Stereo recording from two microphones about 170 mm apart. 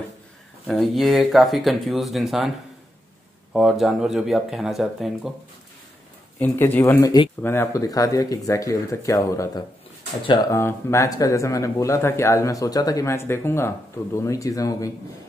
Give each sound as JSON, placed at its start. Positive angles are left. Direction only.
{"t": 0.7, "sound": "speech", "side_deg": 0}
{"t": 3.5, "sound": "speech", "side_deg": 0}
{"t": 6.4, "sound": "speech", "side_deg": 10}